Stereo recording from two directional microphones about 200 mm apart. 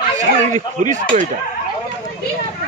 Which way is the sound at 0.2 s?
35° right (ahead or behind).